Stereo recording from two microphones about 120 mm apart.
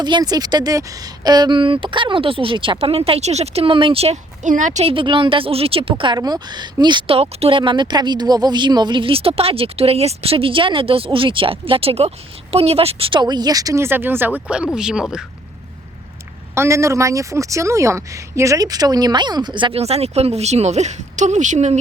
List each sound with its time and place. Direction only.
0.0 s speech: 35° right (ahead or behind); by 4.9 s 85° right
4.9 s speech: 45° right (ahead or behind)
6.1 s speech: 35° right (ahead or behind)
7.2 s speech: 55° right (ahead or behind); by 15.2 s 5° right (ahead or behind)
16.6 s speech: 25° right (ahead or behind); by 19.8 s 40° right (ahead or behind)
19.8 s speech: 60° right (ahead or behind); by 21.8 s 80° right